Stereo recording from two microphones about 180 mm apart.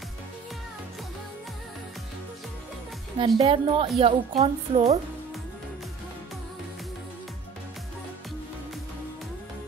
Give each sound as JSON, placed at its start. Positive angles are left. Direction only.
{"t": 3.2, "sound": "a woman's voice", "side_deg": -30}